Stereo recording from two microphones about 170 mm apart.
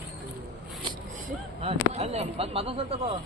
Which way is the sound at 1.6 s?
40° right (ahead or behind).